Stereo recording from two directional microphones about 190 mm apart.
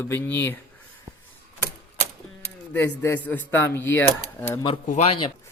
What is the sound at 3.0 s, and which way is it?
Speech, 10° left (ahead or behind).